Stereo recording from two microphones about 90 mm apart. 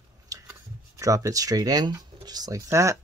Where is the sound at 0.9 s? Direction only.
35° right (ahead or behind).